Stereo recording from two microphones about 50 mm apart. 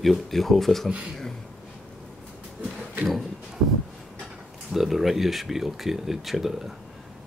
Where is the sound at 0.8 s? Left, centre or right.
Right.